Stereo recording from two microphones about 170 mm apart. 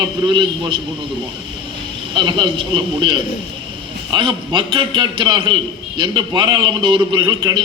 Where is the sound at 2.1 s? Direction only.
30° right (ahead or behind).